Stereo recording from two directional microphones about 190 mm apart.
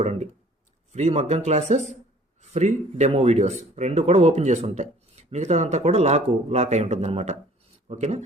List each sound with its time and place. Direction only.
0.0 s speech: 35° right (ahead or behind)